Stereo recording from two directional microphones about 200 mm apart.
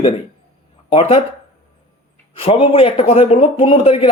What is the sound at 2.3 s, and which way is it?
Speech, 30° left (ahead or behind).